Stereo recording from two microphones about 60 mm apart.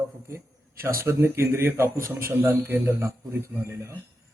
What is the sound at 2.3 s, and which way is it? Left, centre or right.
Speech, right.